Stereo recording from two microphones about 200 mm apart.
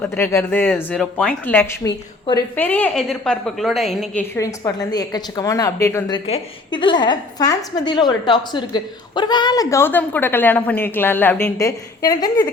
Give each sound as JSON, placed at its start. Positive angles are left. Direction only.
{"t": 0.0, "sound": "a woman's voice", "side_deg": 10}
{"t": 4.4, "sound": "speech", "side_deg": 15}
{"t": 6.1, "sound": "a woman's voice", "side_deg": 25}